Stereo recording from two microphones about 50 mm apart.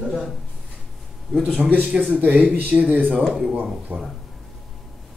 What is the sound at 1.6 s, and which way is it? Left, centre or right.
Speech, right.